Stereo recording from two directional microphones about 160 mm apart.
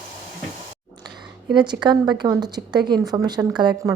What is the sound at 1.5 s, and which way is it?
A woman's voice, 30° right (ahead or behind).